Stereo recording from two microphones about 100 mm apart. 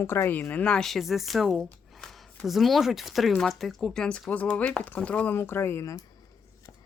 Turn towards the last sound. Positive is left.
turn(degrees=25)  # may be behind; listen again after turning